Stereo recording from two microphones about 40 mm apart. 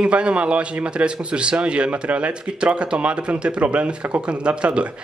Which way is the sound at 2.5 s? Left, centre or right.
Right.